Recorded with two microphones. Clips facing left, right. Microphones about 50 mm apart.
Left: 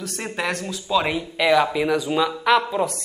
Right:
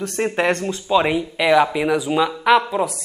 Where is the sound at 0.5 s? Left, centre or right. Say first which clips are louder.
Right 6 dB; right.